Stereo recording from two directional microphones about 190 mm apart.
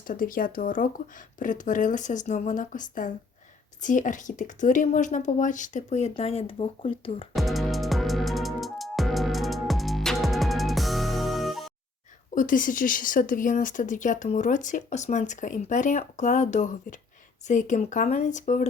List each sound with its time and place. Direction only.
0.1 s speech: 45° left (ahead or behind); by 7.3 s 30° left (ahead or behind)
7.3 s music: centre (ahead or behind)
12.3 s speech: 45° left (ahead or behind)